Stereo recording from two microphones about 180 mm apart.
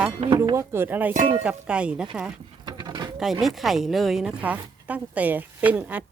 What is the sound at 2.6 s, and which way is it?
Mechanisms, 25° right (ahead or behind).